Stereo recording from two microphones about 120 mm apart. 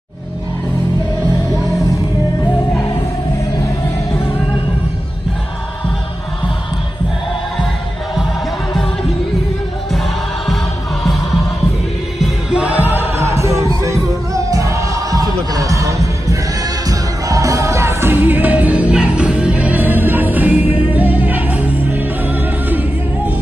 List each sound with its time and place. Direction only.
9.9 s choir: centre (ahead or behind)
12.2 s music: 5° right (ahead or behind)